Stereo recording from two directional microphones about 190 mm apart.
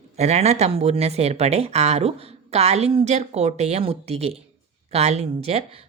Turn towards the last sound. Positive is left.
turn(degrees=-35)  # may be behind; listen again after turning